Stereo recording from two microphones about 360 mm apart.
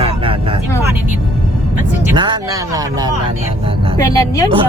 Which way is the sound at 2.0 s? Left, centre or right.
Centre.